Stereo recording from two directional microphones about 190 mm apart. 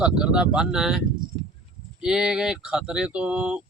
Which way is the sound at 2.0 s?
5° right (ahead or behind).